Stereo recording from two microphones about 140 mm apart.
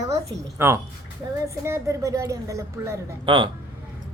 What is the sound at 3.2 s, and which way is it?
Speech, 35° right (ahead or behind).